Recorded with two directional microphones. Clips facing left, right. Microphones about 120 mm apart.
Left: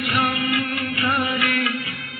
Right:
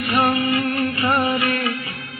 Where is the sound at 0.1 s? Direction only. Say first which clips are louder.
Right 5 dB; 30° right (ahead or behind).